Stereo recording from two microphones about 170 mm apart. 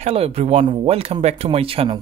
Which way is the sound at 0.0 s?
35° right (ahead or behind).